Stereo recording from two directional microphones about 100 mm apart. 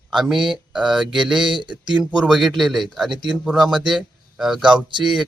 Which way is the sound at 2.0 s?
10° right (ahead or behind).